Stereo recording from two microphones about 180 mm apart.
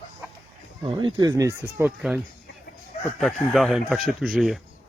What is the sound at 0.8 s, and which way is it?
Speech, 30° right (ahead or behind).